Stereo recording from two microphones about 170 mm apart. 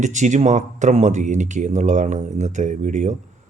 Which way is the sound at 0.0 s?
45° right (ahead or behind).